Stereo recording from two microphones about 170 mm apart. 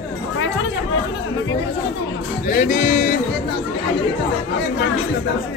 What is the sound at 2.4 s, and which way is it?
Speech, 50° left (ahead or behind).